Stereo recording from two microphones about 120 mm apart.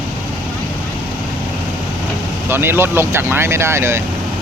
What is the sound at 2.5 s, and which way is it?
Speech, 20° right (ahead or behind).